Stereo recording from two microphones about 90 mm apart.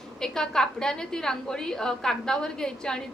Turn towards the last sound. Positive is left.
turn(degrees=5)  # may be behind; listen again after turning